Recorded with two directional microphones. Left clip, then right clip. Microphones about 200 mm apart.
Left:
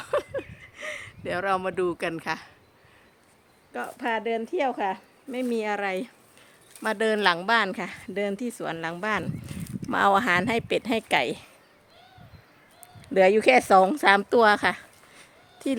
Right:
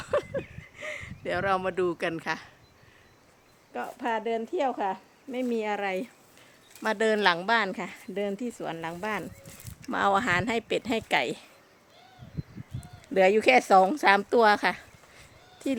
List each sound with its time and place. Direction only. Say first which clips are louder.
0.0 s a sound: left 1 dB; 5° left (ahead or behind)
3.7 s speech: left 2 dB; 10° left (ahead or behind)
13.1 s a woman's voice: left 2 dB; 20° left (ahead or behind)